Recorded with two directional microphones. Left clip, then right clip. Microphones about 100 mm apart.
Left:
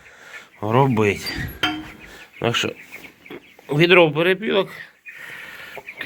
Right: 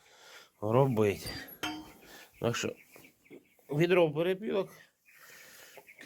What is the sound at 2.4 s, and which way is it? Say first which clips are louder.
Speech: left 12 dB; 90° right.